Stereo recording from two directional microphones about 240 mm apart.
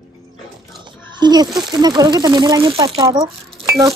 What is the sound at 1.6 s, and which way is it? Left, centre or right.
Speech, centre.